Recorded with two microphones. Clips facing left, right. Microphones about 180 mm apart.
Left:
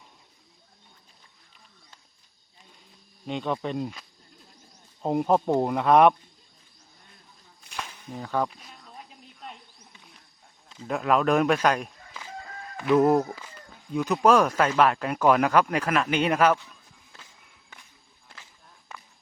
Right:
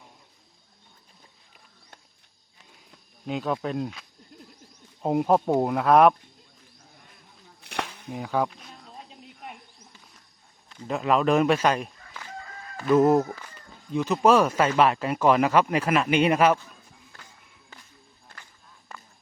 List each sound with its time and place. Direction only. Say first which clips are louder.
3.2 s speech: right 1 dB; 5° right (ahead or behind)
5.0 s speech: right 1 dB; 5° right (ahead or behind)
7.6 s whip: right 6 dB; 70° right (ahead or behind)
8.1 s speech: right 2 dB; 10° right (ahead or behind)
8.4 s speech: right 2 dB; centre (ahead or behind)
9.5 s a sound: right 1 dB; 5° right (ahead or behind)
10.8 s speech: even; centre (ahead or behind)